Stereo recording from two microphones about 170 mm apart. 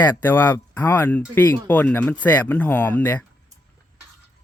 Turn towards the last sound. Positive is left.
turn(degrees=10)  # may be behind; listen again after turning